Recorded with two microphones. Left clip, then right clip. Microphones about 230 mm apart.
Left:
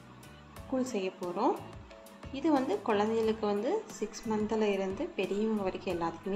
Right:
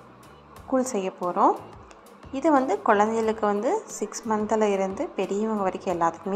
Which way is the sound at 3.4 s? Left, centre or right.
Centre.